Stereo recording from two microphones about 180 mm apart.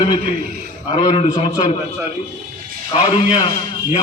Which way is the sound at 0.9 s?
30° left (ahead or behind).